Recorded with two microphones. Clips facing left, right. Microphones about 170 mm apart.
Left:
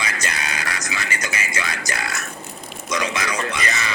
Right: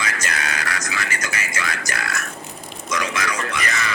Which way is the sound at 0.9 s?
20° left (ahead or behind).